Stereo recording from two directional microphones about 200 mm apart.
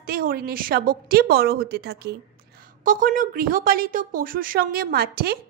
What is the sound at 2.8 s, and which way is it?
A woman's voice, 40° right (ahead or behind).